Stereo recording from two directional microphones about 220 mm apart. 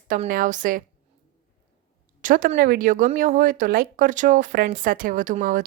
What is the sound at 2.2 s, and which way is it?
Speech, 35° right (ahead or behind).